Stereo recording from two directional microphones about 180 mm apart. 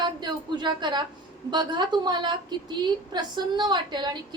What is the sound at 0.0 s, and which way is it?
A woman's voice, 25° right (ahead or behind).